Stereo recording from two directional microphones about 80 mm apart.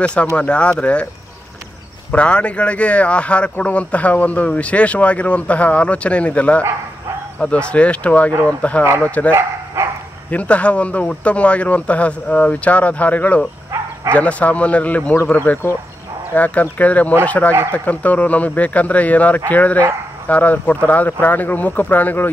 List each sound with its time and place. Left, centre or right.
0.0 s speech: centre
2.1 s speech: centre
10.3 s speech: centre